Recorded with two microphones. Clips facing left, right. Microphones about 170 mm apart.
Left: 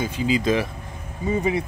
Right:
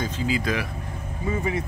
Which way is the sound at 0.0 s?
20° left (ahead or behind).